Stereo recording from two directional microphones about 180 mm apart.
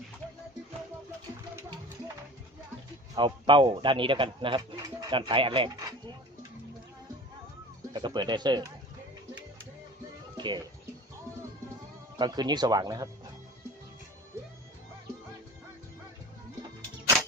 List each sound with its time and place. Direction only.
3.2 s speech: 25° right (ahead or behind)
7.9 s speech: 25° right (ahead or behind)
10.3 s music: 25° right (ahead or behind)
12.2 s speech: 25° right (ahead or behind)